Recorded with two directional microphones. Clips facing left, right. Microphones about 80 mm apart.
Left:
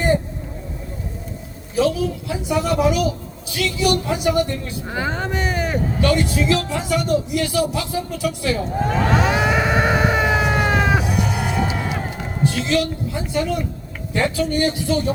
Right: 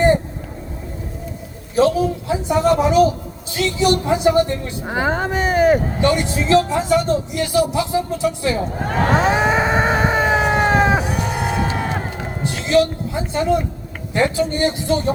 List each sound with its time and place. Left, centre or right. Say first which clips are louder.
1.7 s a woman's voice: right 3 dB; right
6.0 s speech: right 1 dB; right
9.0 s vehicle: right 5 dB; right
12.5 s a woman's voice: right 5 dB; right